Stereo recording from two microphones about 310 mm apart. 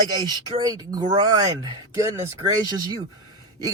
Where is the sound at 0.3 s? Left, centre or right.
Centre.